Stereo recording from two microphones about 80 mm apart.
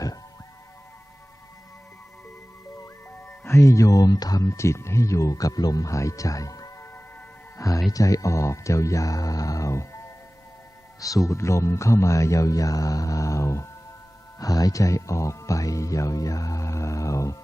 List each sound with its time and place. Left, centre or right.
2.7 s speech: left
7.9 s speech: left
11.0 s speech: left
14.3 s speech: left